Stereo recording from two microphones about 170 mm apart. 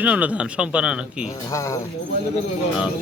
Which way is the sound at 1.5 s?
20° left (ahead or behind).